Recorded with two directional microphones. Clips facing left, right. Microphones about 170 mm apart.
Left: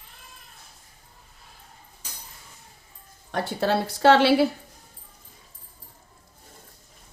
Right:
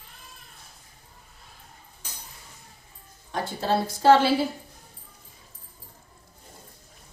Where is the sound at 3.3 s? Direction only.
70° left (ahead or behind).